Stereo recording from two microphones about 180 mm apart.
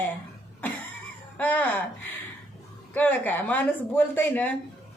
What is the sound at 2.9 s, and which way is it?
A woman's voice, 10° left (ahead or behind).